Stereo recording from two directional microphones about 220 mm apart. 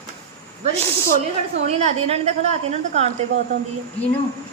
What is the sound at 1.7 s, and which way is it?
A woman's voice, 30° right (ahead or behind).